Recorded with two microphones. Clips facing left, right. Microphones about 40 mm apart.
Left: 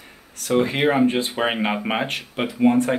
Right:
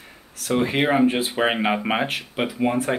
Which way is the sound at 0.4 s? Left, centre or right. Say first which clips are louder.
Left 1 dB; centre.